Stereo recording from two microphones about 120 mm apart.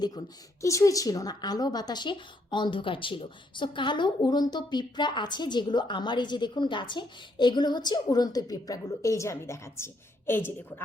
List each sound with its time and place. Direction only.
0.6 s a woman's voice: 25° left (ahead or behind)